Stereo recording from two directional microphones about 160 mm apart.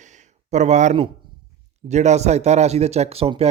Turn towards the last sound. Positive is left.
turn(degrees=-40)  # may be behind; listen again after turning